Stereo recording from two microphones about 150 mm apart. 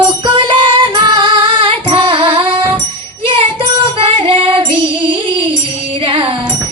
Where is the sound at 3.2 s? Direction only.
35° right (ahead or behind).